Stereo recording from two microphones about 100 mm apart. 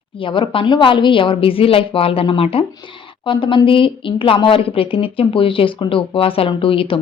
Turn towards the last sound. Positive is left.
turn(degrees=65)  # may be behind; listen again after turning